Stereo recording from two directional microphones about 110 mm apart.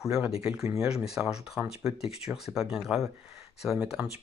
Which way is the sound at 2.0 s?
65° left (ahead or behind).